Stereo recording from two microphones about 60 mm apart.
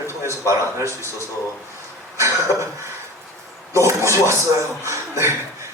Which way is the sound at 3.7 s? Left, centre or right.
Right.